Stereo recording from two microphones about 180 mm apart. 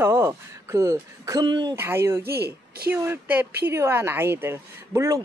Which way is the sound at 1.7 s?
15° right (ahead or behind).